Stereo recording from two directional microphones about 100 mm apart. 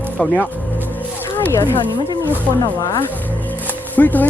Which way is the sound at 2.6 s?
35° left (ahead or behind).